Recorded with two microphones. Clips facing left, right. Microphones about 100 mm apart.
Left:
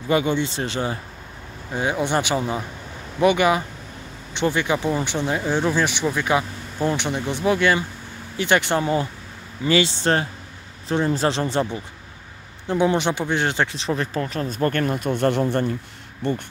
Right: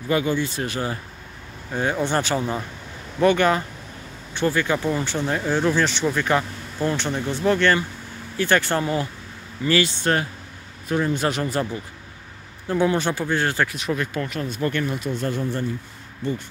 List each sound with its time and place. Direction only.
0.1 s speech: 25° left (ahead or behind)
1.7 s speech: 10° left (ahead or behind); by 15.7 s 70° left (ahead or behind)
16.2 s speech: 60° left (ahead or behind)